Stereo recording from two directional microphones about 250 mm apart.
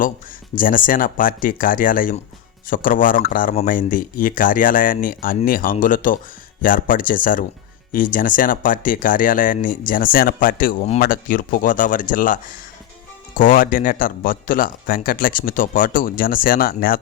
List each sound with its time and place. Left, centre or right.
0.5 s speech: left